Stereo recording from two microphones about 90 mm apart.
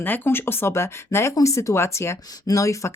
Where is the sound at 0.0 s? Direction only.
25° left (ahead or behind).